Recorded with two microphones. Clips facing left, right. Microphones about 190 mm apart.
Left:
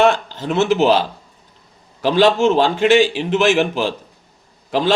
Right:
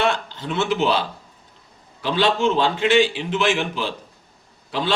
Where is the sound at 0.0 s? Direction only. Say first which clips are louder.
Left 7 dB; 45° left (ahead or behind).